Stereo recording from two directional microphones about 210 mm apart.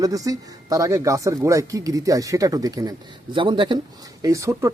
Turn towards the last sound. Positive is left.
turn(degrees=-15)  # may be behind; listen again after turning